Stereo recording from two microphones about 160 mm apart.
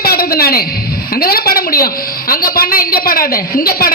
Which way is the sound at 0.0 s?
70° left (ahead or behind).